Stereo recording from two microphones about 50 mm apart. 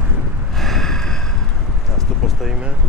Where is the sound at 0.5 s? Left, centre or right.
Centre.